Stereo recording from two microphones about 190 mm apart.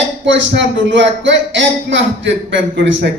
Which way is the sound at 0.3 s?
70° right (ahead or behind).